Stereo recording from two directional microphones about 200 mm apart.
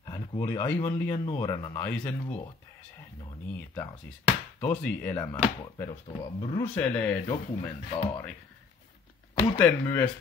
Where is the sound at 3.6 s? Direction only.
10° left (ahead or behind).